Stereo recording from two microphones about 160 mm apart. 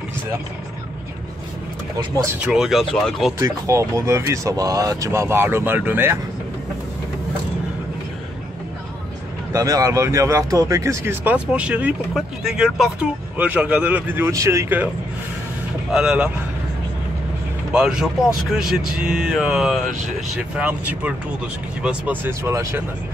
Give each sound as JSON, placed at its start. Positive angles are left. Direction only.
{"t": 2.4, "sound": "speech", "side_deg": -5}
{"t": 3.3, "sound": "speech", "side_deg": -20}
{"t": 9.5, "sound": "speech", "side_deg": -20}
{"t": 15.9, "sound": "speech", "side_deg": -5}
{"t": 17.7, "sound": "speech", "side_deg": -5}